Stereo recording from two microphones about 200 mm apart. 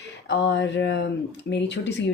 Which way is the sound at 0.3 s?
60° left (ahead or behind).